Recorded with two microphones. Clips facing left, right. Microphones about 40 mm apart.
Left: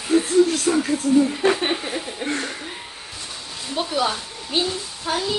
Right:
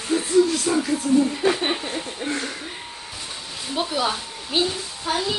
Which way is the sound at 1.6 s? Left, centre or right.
Centre.